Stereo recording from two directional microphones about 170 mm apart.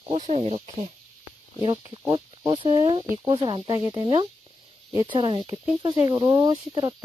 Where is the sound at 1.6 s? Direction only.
25° right (ahead or behind).